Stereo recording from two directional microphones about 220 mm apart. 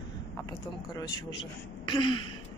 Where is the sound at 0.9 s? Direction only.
20° left (ahead or behind).